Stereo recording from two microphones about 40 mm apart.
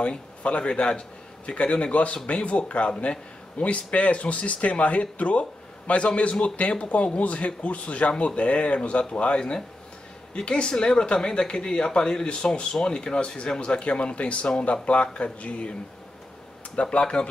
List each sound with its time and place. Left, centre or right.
0.0 s a man's voice: left
16.9 s speech: left